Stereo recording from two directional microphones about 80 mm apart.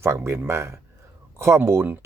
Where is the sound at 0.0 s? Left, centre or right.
Right.